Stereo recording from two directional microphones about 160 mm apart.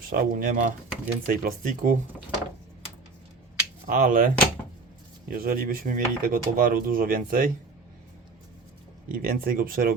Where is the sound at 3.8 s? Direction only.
55° right (ahead or behind).